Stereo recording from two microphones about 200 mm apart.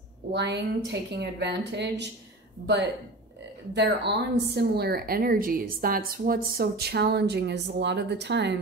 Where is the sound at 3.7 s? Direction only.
60° right (ahead or behind).